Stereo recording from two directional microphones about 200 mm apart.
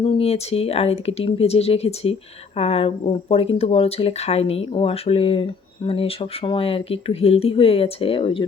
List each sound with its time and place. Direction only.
0.0 s speech: 30° left (ahead or behind)